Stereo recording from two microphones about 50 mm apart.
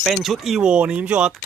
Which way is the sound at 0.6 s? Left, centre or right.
Right.